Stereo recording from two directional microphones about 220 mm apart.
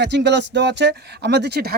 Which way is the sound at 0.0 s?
50° right (ahead or behind).